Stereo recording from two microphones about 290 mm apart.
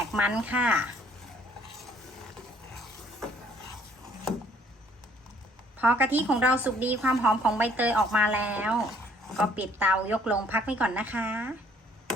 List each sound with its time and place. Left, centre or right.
0.1 s a woman's voice: centre
5.7 s a woman's voice: centre